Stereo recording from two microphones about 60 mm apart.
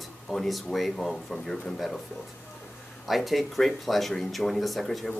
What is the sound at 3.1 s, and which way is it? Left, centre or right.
Speech, centre.